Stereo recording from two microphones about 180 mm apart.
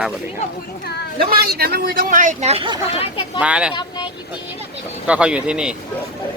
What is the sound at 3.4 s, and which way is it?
Speech, 5° right (ahead or behind).